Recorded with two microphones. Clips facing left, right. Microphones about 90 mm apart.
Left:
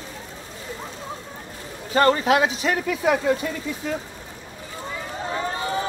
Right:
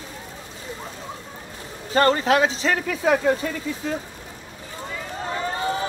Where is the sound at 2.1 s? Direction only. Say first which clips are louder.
Even; 40° right (ahead or behind).